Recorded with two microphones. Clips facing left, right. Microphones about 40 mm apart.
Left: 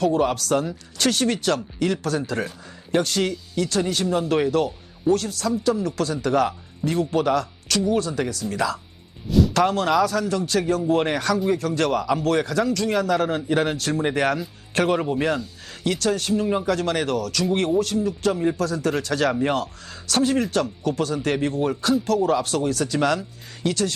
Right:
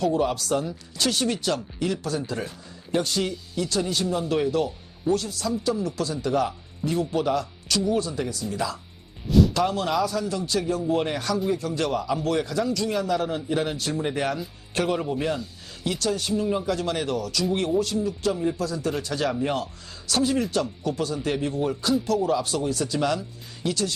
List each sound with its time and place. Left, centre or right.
0.0 s a man's voice: left
18.5 s a man's voice: left
19.3 s speech: left